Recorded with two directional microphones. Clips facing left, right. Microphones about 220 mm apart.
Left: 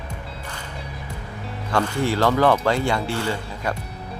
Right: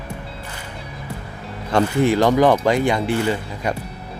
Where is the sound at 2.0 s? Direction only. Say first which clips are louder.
Right 4 dB; 15° right (ahead or behind).